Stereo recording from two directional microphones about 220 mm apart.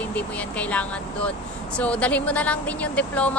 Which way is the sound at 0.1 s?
5° left (ahead or behind).